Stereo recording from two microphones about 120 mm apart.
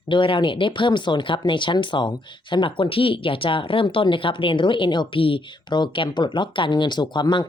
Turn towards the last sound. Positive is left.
turn(degrees=40)  # may be behind; listen again after turning